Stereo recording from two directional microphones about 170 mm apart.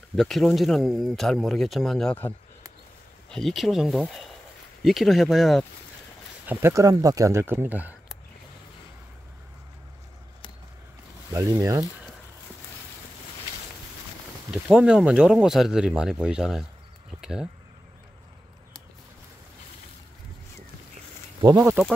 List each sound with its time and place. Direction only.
0.1 s speech: centre (ahead or behind)
6.4 s speech: 10° right (ahead or behind)
11.3 s speech: 20° right (ahead or behind)
14.5 s speech: 5° right (ahead or behind)
21.4 s speech: 20° right (ahead or behind)